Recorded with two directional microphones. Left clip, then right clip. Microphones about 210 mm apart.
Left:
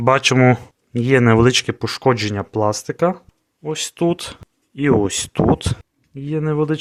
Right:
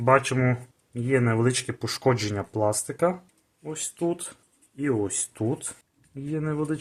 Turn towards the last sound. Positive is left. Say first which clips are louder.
# left 9 dB
turn(degrees=40)  # may be behind; listen again after turning